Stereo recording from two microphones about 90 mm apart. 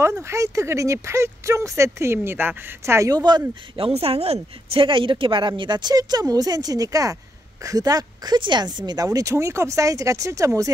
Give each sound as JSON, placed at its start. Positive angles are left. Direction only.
{"t": 0.2, "sound": "speech", "side_deg": -35}
{"t": 3.7, "sound": "speech", "side_deg": -85}
{"t": 4.7, "sound": "speech", "side_deg": -70}